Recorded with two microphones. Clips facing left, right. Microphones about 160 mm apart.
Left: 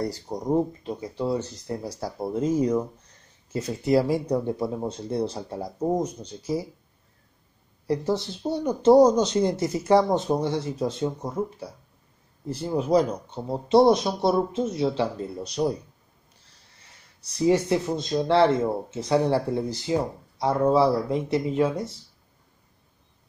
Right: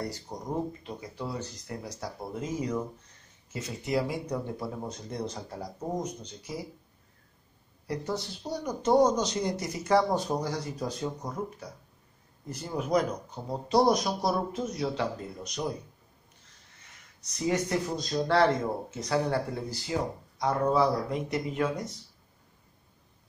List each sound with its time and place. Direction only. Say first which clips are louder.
0.3 s speech: left 11 dB; 30° left (ahead or behind)
7.8 s speech: left 8 dB; 30° left (ahead or behind)
16.4 s a sound: left 3 dB; 30° left (ahead or behind)
18.1 s speech: left 4 dB; 25° left (ahead or behind)